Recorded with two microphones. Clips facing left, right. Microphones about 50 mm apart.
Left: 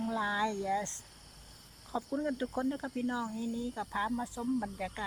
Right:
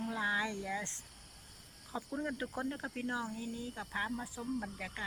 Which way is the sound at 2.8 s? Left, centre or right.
Right.